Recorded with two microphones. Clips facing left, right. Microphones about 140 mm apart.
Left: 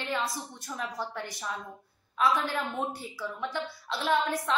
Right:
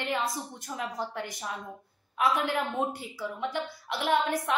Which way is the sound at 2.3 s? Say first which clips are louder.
Right 2 dB; 20° right (ahead or behind).